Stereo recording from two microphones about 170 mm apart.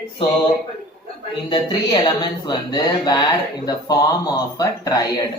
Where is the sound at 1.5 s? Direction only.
25° left (ahead or behind).